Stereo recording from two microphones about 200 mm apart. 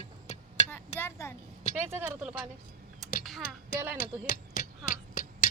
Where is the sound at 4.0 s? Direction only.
45° left (ahead or behind).